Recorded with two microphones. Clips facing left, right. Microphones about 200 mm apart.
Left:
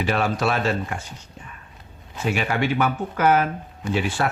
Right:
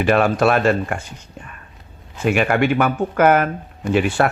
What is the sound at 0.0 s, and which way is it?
Speech, 55° right (ahead or behind).